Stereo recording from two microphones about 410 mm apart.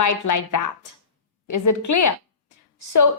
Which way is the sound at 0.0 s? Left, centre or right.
Left.